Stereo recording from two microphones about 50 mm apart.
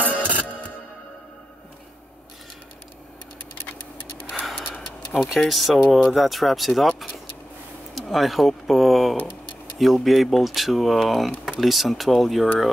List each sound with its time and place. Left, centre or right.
0.2 s music: right
5.1 s speech: centre
7.9 s speech: centre